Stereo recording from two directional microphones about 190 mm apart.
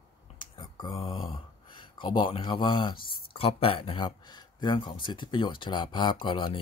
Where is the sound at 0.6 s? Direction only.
20° left (ahead or behind).